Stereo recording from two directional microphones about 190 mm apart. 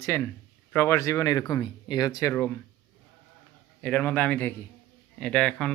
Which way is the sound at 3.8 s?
10° left (ahead or behind).